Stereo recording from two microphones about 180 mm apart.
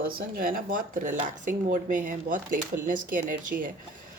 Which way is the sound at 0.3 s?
50° right (ahead or behind).